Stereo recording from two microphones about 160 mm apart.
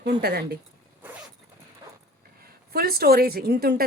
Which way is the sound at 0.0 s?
80° right.